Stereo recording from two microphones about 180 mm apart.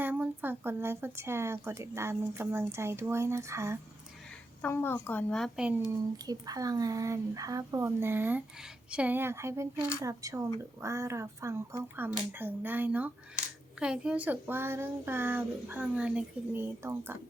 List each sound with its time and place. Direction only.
0.0 s speech: 10° right (ahead or behind)
4.6 s a woman's voice: 10° left (ahead or behind)
5.9 s speech: 20° right (ahead or behind)